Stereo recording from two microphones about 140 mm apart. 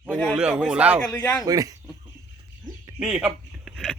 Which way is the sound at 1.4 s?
25° right (ahead or behind).